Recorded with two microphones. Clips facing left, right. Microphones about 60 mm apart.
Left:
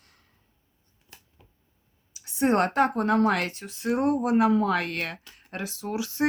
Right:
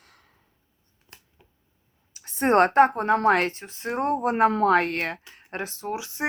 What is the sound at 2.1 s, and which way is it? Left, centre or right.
A woman's voice, right.